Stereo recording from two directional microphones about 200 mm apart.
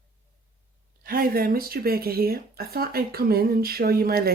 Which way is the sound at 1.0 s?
45° right (ahead or behind).